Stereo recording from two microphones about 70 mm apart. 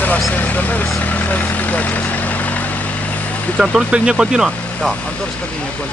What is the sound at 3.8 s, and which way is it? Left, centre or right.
Speech, centre.